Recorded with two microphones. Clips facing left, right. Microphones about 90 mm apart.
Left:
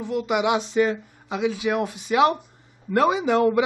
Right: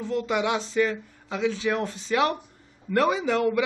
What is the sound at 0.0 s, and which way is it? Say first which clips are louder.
A man's voice: left 3 dB; 15° left (ahead or behind).